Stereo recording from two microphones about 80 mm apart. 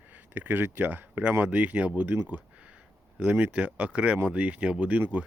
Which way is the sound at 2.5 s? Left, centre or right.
Centre.